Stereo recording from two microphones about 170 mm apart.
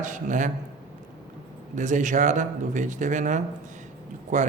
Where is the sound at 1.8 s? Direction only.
45° right (ahead or behind).